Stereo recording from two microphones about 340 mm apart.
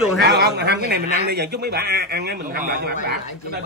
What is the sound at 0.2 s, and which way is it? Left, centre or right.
Speech, right.